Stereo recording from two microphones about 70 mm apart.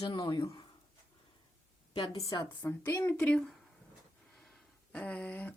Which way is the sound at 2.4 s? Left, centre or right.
Left.